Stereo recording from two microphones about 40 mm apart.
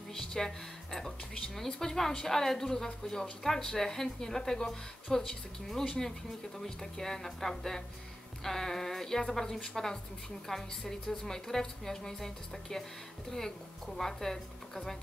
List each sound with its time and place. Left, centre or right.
0.1 s speech: centre